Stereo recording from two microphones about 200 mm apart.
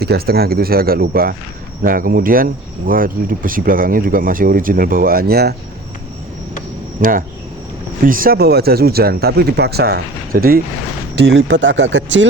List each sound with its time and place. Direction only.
0.0 s speech: 50° right (ahead or behind)
7.0 s speech: 45° right (ahead or behind)
11.1 s speech: 60° right (ahead or behind)